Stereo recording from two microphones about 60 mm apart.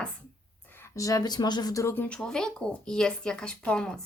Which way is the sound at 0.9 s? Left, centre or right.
Left.